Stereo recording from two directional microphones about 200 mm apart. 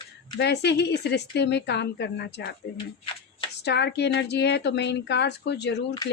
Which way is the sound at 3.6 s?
55° left (ahead or behind).